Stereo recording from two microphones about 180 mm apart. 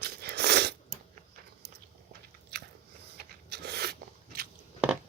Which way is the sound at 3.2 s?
65° right (ahead or behind).